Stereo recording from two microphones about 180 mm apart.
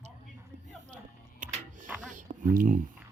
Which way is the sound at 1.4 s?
45° right (ahead or behind).